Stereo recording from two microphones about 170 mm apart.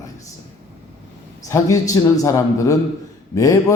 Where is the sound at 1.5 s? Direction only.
20° left (ahead or behind).